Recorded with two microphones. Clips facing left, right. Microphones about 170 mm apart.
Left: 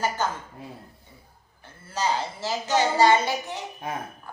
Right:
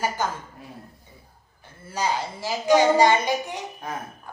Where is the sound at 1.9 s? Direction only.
15° right (ahead or behind).